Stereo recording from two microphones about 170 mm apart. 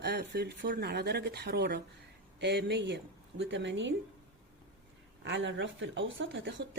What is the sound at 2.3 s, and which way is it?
A woman's voice, 90° right.